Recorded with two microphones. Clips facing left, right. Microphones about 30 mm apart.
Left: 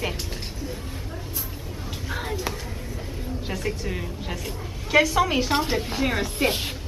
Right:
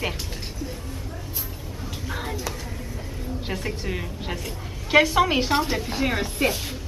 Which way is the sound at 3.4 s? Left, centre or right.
Centre.